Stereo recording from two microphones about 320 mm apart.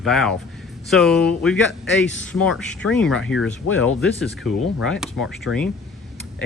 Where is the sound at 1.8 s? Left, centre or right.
Left.